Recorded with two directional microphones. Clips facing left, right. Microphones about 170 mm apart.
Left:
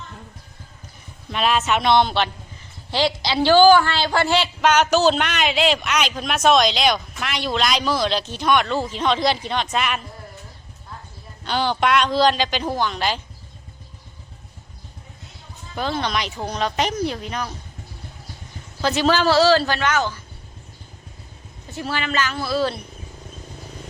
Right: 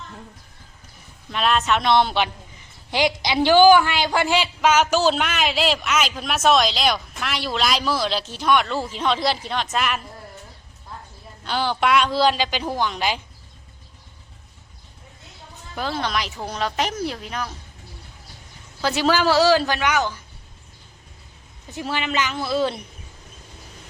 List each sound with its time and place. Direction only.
1.3 s a man's voice: 5° left (ahead or behind)
11.4 s a man's voice: 5° right (ahead or behind)
15.7 s a man's voice: 5° right (ahead or behind)
18.8 s a man's voice: 10° right (ahead or behind)
21.7 s a man's voice: 15° right (ahead or behind)